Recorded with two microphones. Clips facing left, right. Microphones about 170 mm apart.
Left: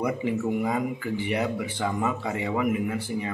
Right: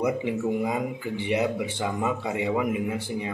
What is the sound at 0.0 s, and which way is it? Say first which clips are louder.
A man's voice: right 1 dB; 15° right (ahead or behind).